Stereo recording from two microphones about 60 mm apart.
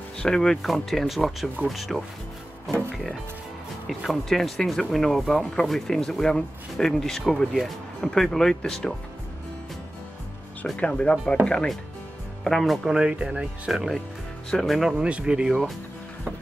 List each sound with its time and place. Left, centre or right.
0.2 s speech: centre
4.0 s speech: centre
10.8 s speech: centre
12.4 s speech: centre
13.1 s speech: centre
13.7 s speech: centre
14.9 s speech: centre